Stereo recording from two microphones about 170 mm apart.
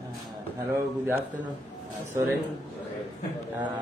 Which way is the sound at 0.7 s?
15° right (ahead or behind).